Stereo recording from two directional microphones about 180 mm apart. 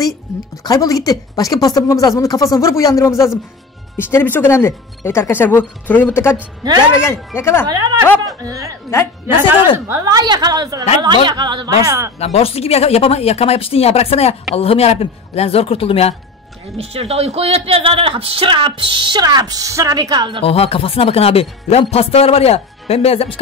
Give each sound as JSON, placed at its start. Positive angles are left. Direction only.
{"t": 0.7, "sound": "speech", "side_deg": 20}
{"t": 7.6, "sound": "speech", "side_deg": -20}
{"t": 9.8, "sound": "speech", "side_deg": -15}
{"t": 12.2, "sound": "speech", "side_deg": 35}
{"t": 16.7, "sound": "speech", "side_deg": -35}
{"t": 20.4, "sound": "speech", "side_deg": 35}